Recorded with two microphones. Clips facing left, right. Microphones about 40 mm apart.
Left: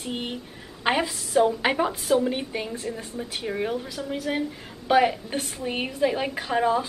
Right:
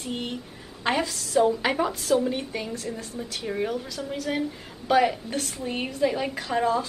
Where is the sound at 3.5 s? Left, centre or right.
Centre.